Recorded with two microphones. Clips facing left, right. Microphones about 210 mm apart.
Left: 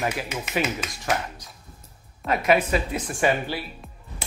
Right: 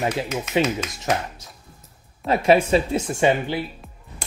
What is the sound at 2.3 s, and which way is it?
Speech, 30° right (ahead or behind).